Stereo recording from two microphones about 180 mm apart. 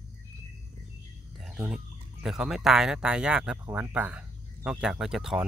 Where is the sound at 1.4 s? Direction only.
5° right (ahead or behind).